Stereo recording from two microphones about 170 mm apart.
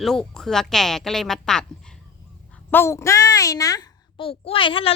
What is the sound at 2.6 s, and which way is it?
Speech, 15° left (ahead or behind).